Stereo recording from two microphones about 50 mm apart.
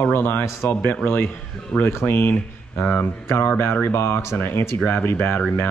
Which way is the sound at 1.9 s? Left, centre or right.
Left.